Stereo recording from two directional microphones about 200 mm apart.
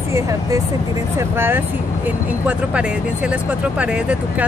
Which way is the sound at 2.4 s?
5° right (ahead or behind).